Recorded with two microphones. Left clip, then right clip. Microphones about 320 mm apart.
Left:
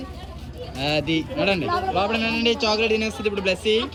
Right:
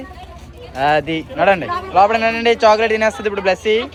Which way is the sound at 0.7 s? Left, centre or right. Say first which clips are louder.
Right 9 dB; centre.